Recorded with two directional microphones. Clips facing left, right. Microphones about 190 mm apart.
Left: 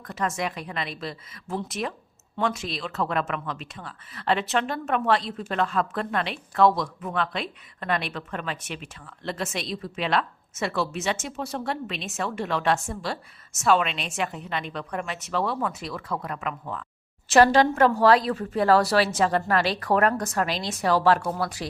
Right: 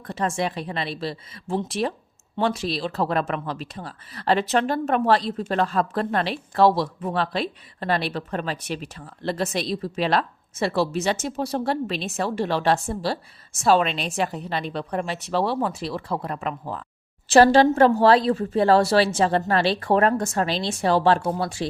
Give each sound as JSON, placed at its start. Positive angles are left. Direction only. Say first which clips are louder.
{"t": 0.1, "sound": "speech", "louder": "right 3 dB", "side_deg": -30}